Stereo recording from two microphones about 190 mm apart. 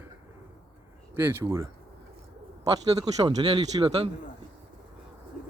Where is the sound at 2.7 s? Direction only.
20° right (ahead or behind).